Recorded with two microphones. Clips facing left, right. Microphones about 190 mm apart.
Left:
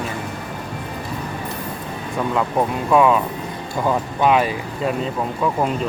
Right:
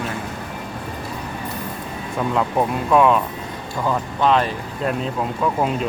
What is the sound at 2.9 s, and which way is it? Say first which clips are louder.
Speech: even; centre (ahead or behind).